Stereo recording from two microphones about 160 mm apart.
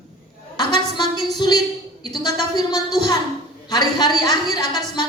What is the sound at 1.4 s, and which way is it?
A woman's voice, 25° left (ahead or behind).